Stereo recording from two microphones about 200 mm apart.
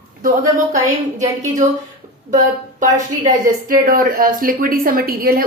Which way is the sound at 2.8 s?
40° right (ahead or behind).